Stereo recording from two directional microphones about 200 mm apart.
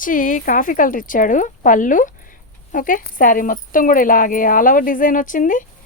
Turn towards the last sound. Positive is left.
turn(degrees=40)  # may be behind; listen again after turning